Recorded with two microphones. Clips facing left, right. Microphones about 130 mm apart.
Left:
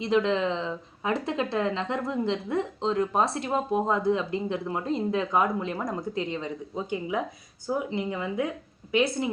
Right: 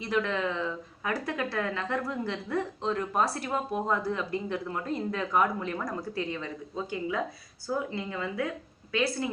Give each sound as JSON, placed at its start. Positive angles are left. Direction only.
{"t": 0.0, "sound": "speech", "side_deg": 20}